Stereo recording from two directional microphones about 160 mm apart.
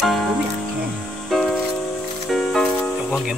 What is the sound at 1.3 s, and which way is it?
Music, centre (ahead or behind).